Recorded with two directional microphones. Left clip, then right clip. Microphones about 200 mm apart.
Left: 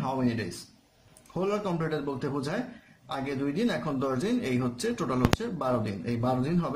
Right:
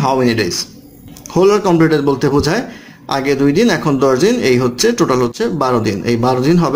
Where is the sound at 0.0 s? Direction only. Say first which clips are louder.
Right 17 dB; 35° right (ahead or behind).